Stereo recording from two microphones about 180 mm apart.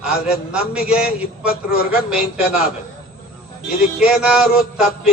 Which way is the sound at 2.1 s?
5° right (ahead or behind).